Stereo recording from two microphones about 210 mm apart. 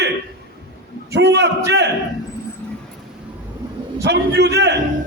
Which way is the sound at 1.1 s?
55° right (ahead or behind).